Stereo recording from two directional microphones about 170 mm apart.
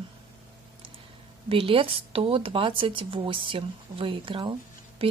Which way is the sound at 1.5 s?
30° right (ahead or behind).